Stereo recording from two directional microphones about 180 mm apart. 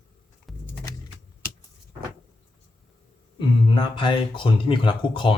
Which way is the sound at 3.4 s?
25° left (ahead or behind).